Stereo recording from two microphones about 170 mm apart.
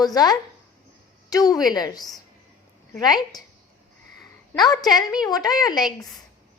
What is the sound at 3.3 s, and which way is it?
Speech, 20° left (ahead or behind).